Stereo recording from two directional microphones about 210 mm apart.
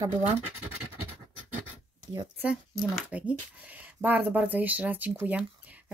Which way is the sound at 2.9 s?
5° right (ahead or behind).